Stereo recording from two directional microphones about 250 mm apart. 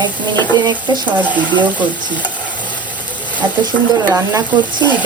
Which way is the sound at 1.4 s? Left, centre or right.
Centre.